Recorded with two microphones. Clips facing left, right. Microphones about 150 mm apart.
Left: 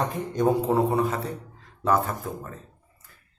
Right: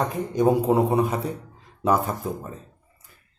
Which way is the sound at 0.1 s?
10° right (ahead or behind).